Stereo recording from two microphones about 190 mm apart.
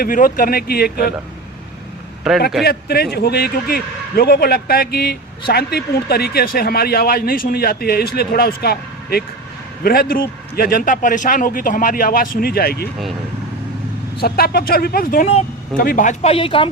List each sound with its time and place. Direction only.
0.0 s a man's voice: 50° left (ahead or behind)
2.3 s a man's voice: centre (ahead or behind)
2.6 s a man's voice: 55° left (ahead or behind)
14.2 s a man's voice: 55° left (ahead or behind); by 16.6 s 30° left (ahead or behind)